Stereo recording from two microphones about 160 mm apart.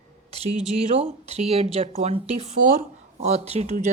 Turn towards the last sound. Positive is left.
turn(degrees=-45)  # may be behind; listen again after turning